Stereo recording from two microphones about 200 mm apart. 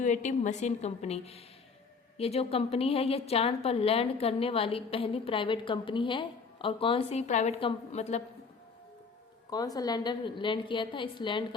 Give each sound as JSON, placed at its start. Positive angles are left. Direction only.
{"t": 0.0, "sound": "a woman's voice", "side_deg": 35}
{"t": 9.5, "sound": "a woman's voice", "side_deg": 20}